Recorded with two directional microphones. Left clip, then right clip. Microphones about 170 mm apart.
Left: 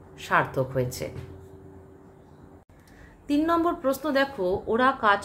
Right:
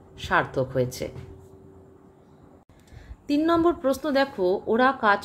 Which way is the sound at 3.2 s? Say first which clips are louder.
Right 2 dB; 35° right (ahead or behind).